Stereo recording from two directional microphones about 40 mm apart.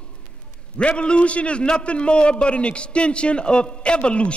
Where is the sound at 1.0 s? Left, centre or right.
Left.